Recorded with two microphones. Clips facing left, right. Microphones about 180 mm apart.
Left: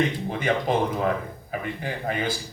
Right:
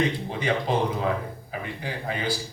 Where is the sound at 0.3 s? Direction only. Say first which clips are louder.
Left 2 dB; 50° left (ahead or behind).